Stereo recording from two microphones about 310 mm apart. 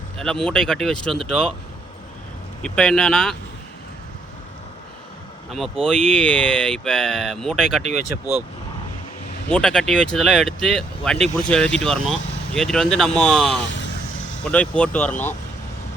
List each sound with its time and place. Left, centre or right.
0.2 s speech: centre
2.6 s speech: centre
5.5 s speech: centre
9.5 s speech: centre